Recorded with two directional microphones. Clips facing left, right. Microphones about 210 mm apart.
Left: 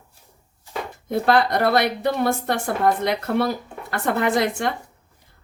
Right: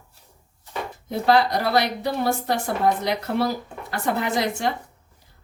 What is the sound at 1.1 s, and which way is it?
A woman's voice, 55° left (ahead or behind).